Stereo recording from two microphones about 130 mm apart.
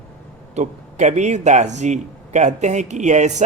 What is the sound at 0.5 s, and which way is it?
A man's voice, 65° right (ahead or behind).